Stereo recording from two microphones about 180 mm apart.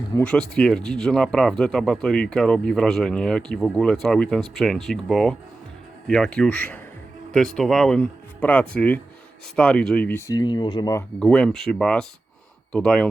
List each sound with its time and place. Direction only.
0.2 s speech: 5° left (ahead or behind); by 11.0 s 20° left (ahead or behind)
11.2 s speech: 5° left (ahead or behind)